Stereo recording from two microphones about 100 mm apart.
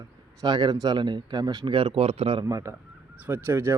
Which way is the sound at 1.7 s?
65° right (ahead or behind).